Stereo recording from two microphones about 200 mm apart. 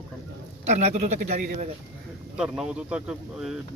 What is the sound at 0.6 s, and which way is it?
A man's voice, 35° right (ahead or behind).